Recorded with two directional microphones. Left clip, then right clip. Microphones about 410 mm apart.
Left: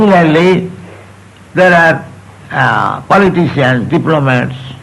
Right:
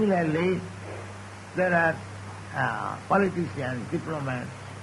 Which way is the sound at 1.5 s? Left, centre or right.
Right.